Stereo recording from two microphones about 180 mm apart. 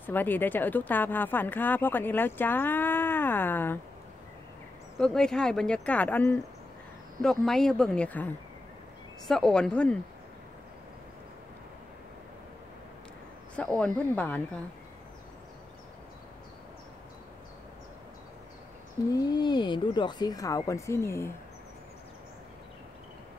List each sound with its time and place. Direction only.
0.0 s speech: 10° left (ahead or behind)
4.9 s speech: 5° left (ahead or behind)
7.4 s speech: centre (ahead or behind)
9.3 s speech: 5° left (ahead or behind)
13.6 s speech: 5° left (ahead or behind)
19.1 s speech: 25° left (ahead or behind)